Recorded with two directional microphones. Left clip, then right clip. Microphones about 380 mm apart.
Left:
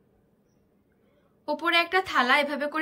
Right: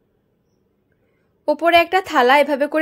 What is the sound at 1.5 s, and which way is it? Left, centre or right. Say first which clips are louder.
A woman's voice: right 10 dB; centre.